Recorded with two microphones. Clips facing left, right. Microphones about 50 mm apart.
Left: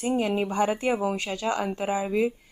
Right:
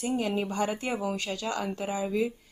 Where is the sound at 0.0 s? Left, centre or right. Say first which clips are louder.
Left 4 dB; left.